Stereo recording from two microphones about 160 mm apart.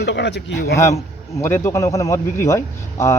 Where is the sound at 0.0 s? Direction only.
90° left.